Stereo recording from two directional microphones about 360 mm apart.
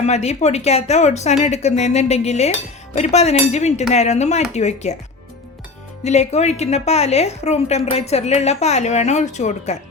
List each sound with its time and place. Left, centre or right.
0.0 s a woman's voice: centre
6.1 s a woman's voice: centre